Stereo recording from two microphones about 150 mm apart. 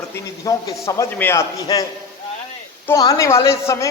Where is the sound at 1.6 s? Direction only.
25° left (ahead or behind).